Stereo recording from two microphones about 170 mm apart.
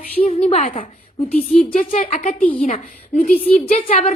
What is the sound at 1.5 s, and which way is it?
A woman's voice, 50° left (ahead or behind).